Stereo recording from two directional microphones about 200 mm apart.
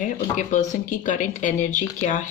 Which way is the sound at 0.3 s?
40° left (ahead or behind).